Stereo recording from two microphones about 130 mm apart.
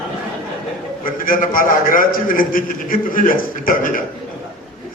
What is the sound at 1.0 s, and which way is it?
A man's voice, 90° left.